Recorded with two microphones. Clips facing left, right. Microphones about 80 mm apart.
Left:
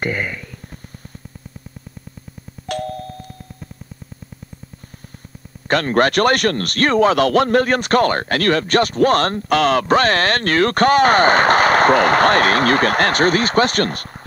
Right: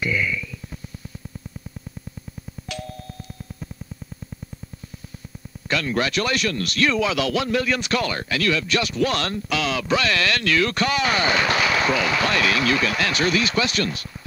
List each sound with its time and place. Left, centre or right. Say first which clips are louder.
0.0 s a sound: left 1 dB; left
2.7 s music: left 10 dB; left
5.7 s speech: left 7 dB; left